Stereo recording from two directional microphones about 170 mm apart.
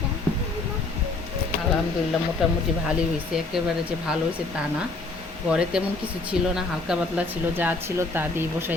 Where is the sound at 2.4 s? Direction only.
Centre (ahead or behind).